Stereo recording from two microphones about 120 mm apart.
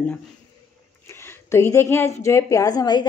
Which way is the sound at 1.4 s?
20° left (ahead or behind).